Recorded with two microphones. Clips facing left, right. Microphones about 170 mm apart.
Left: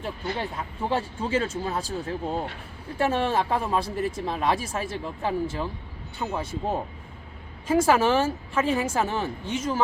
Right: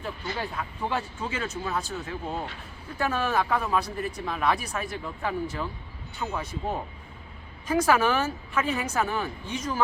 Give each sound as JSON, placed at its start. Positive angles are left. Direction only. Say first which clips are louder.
{"t": 0.3, "sound": "speech", "louder": "left 2 dB", "side_deg": 30}